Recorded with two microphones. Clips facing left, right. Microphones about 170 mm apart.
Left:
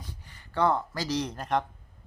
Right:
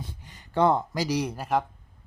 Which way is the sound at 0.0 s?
20° right (ahead or behind).